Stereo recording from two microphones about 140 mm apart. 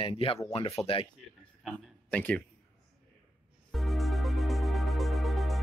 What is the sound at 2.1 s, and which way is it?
Speech, 10° left (ahead or behind).